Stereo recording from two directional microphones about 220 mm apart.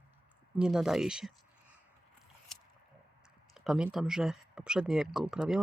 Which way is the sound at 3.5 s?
5° right (ahead or behind).